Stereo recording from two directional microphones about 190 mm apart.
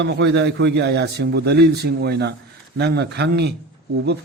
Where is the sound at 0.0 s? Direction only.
65° right (ahead or behind).